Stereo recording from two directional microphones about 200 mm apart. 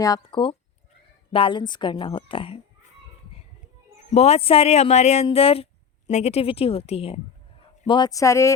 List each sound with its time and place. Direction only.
0.0 s speech: 20° left (ahead or behind)
4.1 s speech: 35° left (ahead or behind); by 8.5 s 15° left (ahead or behind)